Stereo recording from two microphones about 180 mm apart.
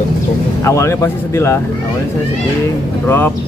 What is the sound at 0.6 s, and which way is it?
Speech, 15° left (ahead or behind).